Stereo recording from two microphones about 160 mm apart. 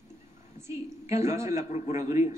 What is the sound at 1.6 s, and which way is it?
Speech, 45° left (ahead or behind).